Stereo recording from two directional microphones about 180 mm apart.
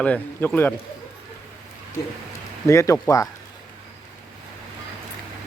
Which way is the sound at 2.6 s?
15° left (ahead or behind).